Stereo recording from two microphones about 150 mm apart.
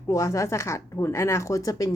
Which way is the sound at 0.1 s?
20° left (ahead or behind).